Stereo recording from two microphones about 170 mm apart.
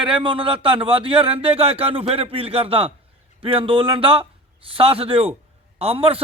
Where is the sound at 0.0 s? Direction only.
30° right (ahead or behind).